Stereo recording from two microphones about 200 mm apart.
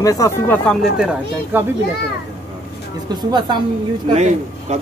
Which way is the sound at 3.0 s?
20° right (ahead or behind).